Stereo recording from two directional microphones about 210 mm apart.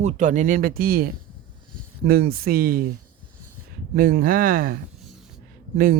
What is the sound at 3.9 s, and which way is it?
Speech, 45° right (ahead or behind).